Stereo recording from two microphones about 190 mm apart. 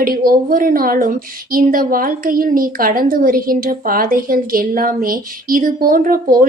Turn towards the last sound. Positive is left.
turn(degrees=-45)  # may be behind; listen again after turning